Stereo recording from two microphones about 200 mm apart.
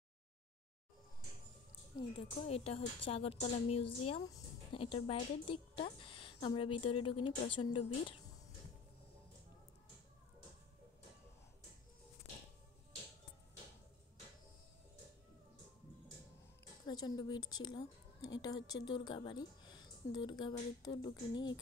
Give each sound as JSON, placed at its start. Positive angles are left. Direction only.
{"t": 2.0, "sound": "speech", "side_deg": 30}
{"t": 16.8, "sound": "speech", "side_deg": 20}